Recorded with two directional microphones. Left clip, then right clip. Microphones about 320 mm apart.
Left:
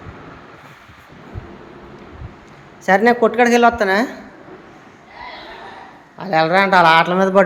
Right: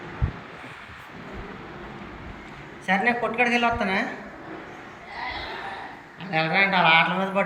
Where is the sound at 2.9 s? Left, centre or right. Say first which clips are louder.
Left 10 dB; centre.